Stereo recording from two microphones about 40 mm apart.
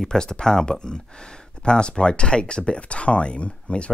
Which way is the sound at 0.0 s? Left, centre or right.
Centre.